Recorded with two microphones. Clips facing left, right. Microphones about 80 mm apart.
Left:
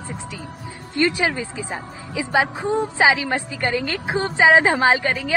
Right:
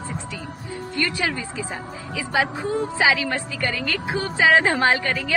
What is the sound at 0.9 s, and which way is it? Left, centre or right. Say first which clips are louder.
A woman's voice: left 5 dB; left.